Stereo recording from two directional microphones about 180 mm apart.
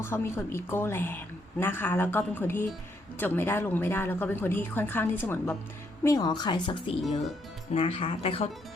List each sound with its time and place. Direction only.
0.0 s a woman's voice: 15° left (ahead or behind); by 8.4 s 30° left (ahead or behind)